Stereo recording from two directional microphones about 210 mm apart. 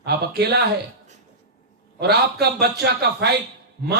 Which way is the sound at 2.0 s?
50° right (ahead or behind).